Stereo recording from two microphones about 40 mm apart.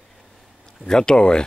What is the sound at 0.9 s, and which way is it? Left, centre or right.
Speech, centre.